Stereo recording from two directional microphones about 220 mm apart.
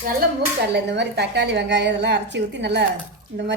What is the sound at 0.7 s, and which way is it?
A woman's voice, 50° right (ahead or behind).